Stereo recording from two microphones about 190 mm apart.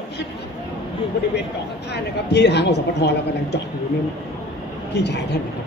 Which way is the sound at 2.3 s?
60° left (ahead or behind).